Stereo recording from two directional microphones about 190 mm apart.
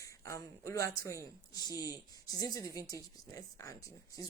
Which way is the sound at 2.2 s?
20° left (ahead or behind).